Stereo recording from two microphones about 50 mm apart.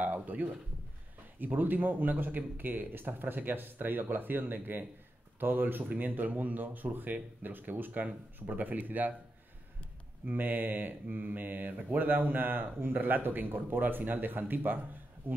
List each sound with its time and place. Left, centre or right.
0.0 s a man's voice: right
10.2 s speech: right